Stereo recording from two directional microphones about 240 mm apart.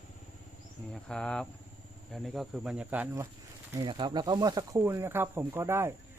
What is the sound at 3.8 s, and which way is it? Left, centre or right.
Speech, centre.